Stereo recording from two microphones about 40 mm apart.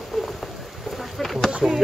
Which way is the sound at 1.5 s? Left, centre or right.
Right.